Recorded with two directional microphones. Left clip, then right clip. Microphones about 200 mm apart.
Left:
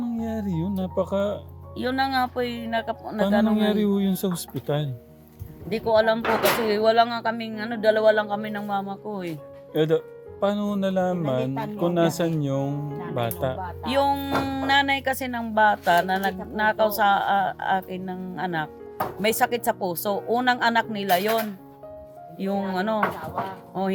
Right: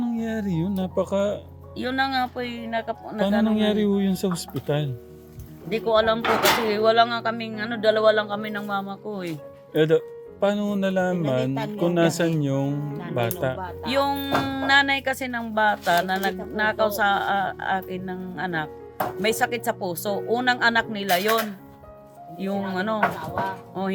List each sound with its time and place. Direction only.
0.0 s speech: 15° right (ahead or behind)
1.7 s speech: centre (ahead or behind)
3.5 s speech: 5° right (ahead or behind)
5.6 s speech: centre (ahead or behind)
9.7 s speech: 10° right (ahead or behind)
13.8 s speech: 5° left (ahead or behind)